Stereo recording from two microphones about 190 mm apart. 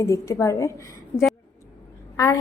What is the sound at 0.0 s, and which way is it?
Speech, 15° left (ahead or behind).